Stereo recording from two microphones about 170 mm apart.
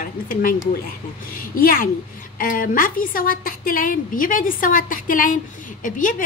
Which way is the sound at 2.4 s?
55° left (ahead or behind).